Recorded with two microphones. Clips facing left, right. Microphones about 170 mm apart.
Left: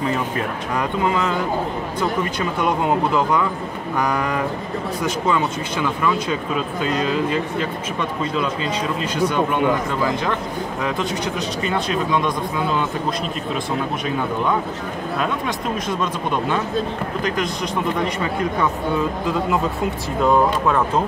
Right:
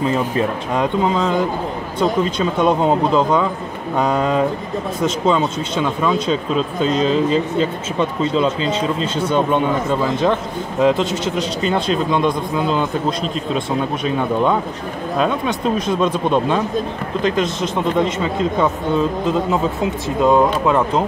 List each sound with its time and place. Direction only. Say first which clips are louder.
0.7 s speech: right 3 dB; 20° right (ahead or behind)
15.1 s speech: right 6 dB; 20° right (ahead or behind)
20.2 s speech: right 3 dB; 15° right (ahead or behind)